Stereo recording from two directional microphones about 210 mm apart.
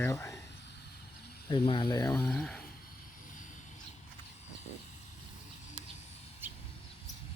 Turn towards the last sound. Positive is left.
turn(degrees=-10)  # may be behind; listen again after turning